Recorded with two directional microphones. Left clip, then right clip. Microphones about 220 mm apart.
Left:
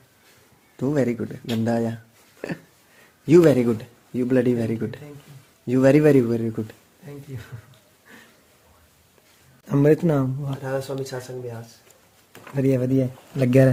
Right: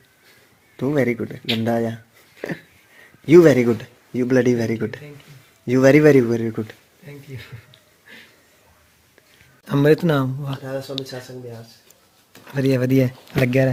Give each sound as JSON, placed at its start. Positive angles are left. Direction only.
{"t": 0.8, "sound": "speech", "side_deg": -10}
{"t": 3.2, "sound": "speech", "side_deg": -10}
{"t": 9.6, "sound": "speech", "side_deg": 5}
{"t": 10.6, "sound": "speech", "side_deg": 15}
{"t": 12.5, "sound": "speech", "side_deg": 0}